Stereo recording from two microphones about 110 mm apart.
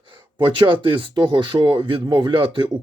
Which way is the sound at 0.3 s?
45° right (ahead or behind).